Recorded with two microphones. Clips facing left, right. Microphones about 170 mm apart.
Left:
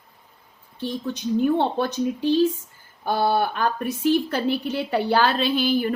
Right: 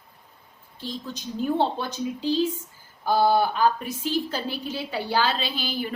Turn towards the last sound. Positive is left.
turn(degrees=55)  # may be behind; listen again after turning